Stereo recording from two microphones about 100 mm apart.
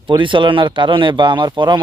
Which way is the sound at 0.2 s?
55° right (ahead or behind).